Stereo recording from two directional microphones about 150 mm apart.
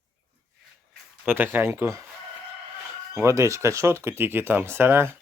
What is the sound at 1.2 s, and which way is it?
Speech, 15° right (ahead or behind).